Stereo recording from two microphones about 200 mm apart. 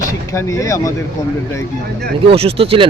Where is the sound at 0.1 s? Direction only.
15° left (ahead or behind).